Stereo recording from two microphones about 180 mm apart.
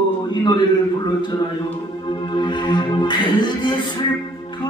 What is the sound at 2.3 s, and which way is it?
Music, 25° left (ahead or behind).